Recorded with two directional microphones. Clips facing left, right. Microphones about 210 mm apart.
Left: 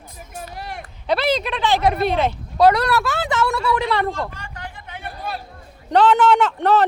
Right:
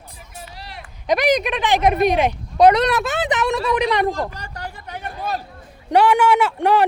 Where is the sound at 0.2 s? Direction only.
50° left (ahead or behind).